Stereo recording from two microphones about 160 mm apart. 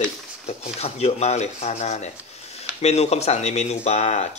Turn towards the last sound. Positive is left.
turn(degrees=45)  # may be behind; listen again after turning